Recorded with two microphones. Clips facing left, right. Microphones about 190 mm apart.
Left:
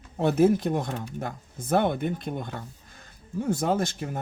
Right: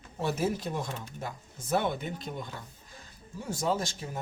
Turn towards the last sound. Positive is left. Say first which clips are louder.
# left 5 dB
turn(degrees=55)  # may be behind; listen again after turning